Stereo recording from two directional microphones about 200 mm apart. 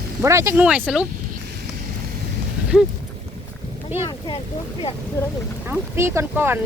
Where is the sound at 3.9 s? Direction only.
10° right (ahead or behind).